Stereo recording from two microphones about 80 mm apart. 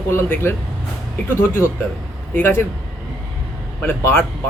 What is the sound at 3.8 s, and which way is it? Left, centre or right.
Speech, left.